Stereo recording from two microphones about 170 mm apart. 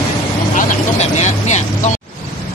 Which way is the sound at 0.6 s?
45° left (ahead or behind).